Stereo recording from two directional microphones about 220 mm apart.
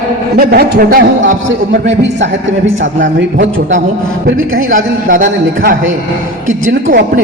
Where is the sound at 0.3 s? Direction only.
40° right (ahead or behind).